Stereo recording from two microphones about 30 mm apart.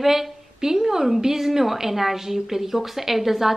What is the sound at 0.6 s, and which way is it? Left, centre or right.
A woman's voice, centre.